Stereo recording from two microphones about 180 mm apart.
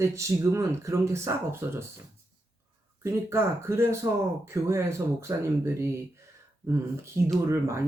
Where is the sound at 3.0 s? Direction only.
15° right (ahead or behind).